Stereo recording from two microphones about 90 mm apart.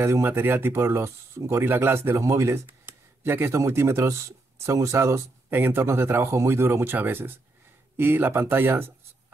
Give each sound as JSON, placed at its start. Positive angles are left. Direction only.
{"t": 0.0, "sound": "speech", "side_deg": -25}